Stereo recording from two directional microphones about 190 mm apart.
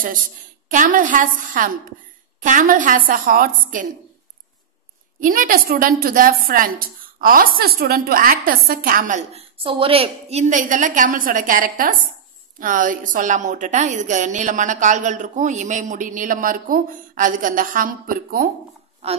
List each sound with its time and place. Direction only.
0.7 s a woman's voice: 45° right (ahead or behind)
5.2 s a woman's voice: 45° right (ahead or behind)
19.0 s a woman's voice: 30° right (ahead or behind)